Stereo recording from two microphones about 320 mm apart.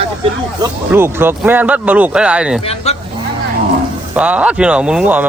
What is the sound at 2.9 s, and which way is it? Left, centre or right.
Speech, centre.